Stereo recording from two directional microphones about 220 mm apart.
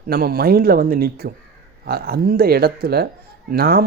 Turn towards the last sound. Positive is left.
turn(degrees=-45)  # may be behind; listen again after turning